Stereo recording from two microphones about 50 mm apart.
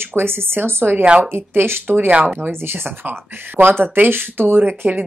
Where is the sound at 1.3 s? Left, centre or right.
Right.